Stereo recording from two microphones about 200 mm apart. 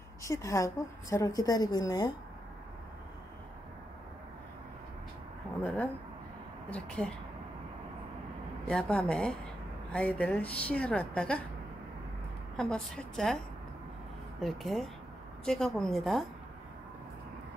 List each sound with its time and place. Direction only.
0.2 s a woman's voice: 15° left (ahead or behind)
5.6 s a woman's voice: 5° left (ahead or behind)
8.6 s a woman's voice: 5° left (ahead or behind)
12.5 s a woman's voice: 5° left (ahead or behind)
14.4 s a woman's voice: centre (ahead or behind)